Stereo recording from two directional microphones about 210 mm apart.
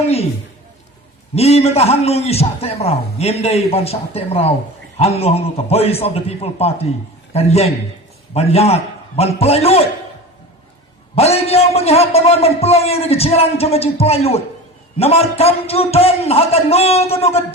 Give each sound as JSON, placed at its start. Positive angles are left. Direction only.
{"t": 1.4, "sound": "a man's voice", "side_deg": 30}
{"t": 11.1, "sound": "a man's voice", "side_deg": 30}